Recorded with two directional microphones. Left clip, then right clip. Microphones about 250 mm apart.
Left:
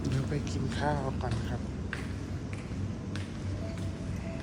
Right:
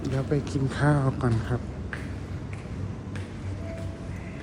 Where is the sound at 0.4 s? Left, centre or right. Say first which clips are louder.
Right 6 dB; centre.